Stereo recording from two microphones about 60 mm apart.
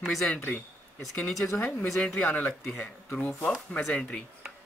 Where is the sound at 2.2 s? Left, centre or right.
Left.